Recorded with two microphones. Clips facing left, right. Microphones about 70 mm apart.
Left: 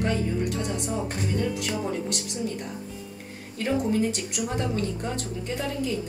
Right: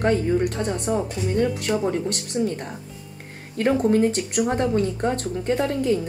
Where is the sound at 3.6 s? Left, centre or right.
Right.